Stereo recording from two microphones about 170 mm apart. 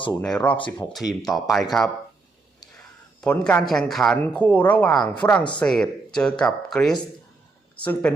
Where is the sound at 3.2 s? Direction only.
10° left (ahead or behind).